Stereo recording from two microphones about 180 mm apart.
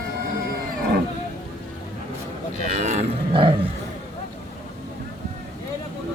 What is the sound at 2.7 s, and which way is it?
Roaring cats, 40° right (ahead or behind).